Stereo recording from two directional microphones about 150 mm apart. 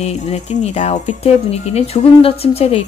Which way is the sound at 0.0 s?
45° left (ahead or behind).